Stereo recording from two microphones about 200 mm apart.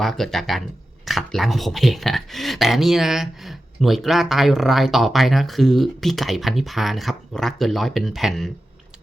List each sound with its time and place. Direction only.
0.0 s speech: centre (ahead or behind)